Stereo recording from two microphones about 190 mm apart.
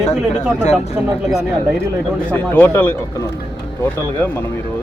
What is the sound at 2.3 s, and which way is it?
Speech, 10° left (ahead or behind).